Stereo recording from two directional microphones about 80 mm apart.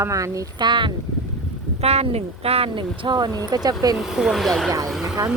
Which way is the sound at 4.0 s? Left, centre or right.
Centre.